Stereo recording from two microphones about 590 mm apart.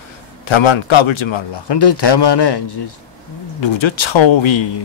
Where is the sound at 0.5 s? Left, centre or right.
Left.